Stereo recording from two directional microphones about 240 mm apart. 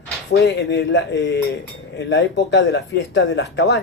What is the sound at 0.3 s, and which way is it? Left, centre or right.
A man's voice, left.